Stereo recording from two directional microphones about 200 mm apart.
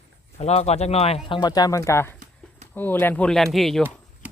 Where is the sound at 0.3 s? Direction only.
30° left (ahead or behind); by 3.8 s centre (ahead or behind).